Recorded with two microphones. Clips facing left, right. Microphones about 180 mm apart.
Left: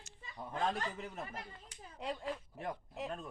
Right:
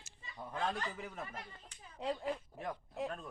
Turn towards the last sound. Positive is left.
turn(degrees=15)  # may be behind; listen again after turning